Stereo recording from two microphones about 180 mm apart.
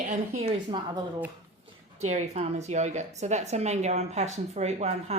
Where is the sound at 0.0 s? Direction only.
40° right (ahead or behind).